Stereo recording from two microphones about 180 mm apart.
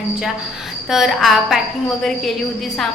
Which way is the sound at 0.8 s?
Centre (ahead or behind).